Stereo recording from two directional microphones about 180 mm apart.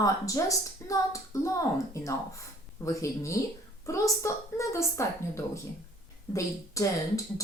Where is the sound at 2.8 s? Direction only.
15° left (ahead or behind).